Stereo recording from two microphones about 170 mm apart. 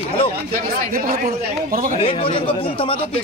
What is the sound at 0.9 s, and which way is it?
Speech, 55° right (ahead or behind).